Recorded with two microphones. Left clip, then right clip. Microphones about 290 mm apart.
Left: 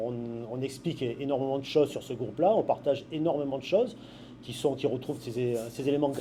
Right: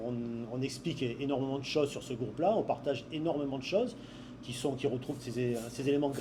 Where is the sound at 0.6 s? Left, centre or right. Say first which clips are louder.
Left 3 dB; left.